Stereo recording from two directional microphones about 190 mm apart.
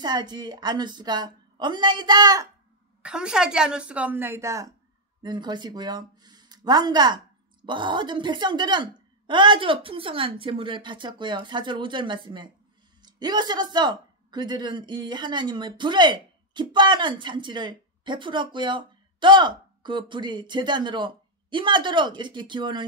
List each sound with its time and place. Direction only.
0.0 s speech: 20° right (ahead or behind)
3.0 s a woman's voice: 5° right (ahead or behind); by 22.8 s 25° right (ahead or behind)